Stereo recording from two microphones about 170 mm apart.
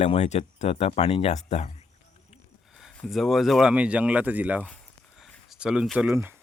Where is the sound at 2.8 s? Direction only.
Centre (ahead or behind).